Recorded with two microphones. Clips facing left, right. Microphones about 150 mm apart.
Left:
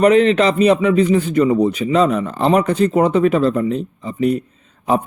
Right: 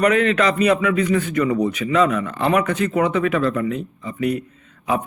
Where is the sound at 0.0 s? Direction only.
30° left (ahead or behind).